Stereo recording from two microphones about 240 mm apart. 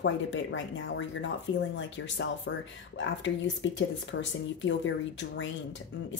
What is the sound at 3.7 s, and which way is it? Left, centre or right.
Speech, left.